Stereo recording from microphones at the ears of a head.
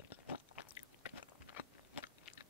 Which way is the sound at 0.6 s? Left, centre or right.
Left.